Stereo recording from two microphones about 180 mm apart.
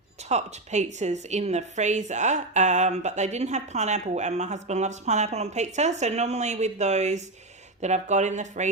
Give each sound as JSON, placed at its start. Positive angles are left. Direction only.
{"t": 0.3, "sound": "a woman's voice", "side_deg": -40}